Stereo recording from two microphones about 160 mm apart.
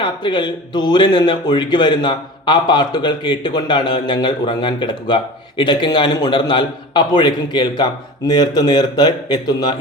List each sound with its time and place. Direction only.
0.0 s speech: 30° left (ahead or behind)